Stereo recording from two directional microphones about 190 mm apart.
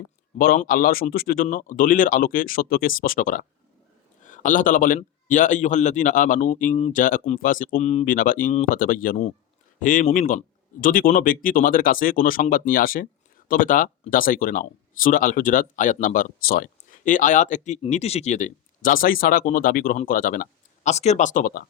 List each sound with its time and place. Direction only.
0.3 s speech: 45° left (ahead or behind)